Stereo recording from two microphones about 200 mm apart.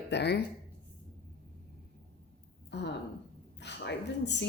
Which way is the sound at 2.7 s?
60° left (ahead or behind).